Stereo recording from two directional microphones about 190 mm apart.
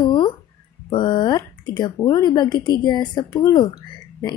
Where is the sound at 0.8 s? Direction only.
25° left (ahead or behind).